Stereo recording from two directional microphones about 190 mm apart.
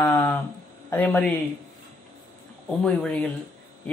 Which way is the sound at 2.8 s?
5° left (ahead or behind).